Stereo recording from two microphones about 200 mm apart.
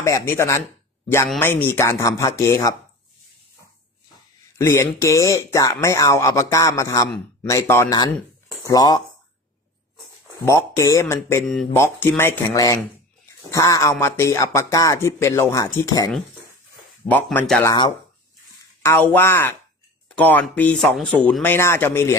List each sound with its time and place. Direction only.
0.0 s speech: 15° left (ahead or behind)
4.6 s speech: 15° left (ahead or behind)
10.4 s speech: 15° left (ahead or behind)
11.4 s speech: centre (ahead or behind); by 16.1 s 20° left (ahead or behind)
17.1 s speech: 10° left (ahead or behind)
18.8 s speech: 10° left (ahead or behind)